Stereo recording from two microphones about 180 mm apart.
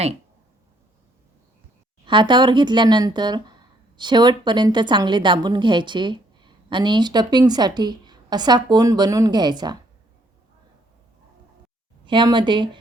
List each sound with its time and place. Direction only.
2.0 s speech: 25° right (ahead or behind)
12.0 s speech: 25° right (ahead or behind)